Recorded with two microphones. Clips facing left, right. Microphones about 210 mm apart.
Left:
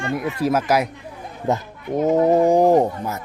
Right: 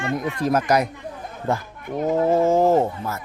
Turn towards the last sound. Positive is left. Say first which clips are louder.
# left 3 dB
turn(degrees=15)  # may be behind; listen again after turning